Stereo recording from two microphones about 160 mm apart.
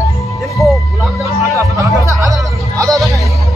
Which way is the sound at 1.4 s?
20° right (ahead or behind).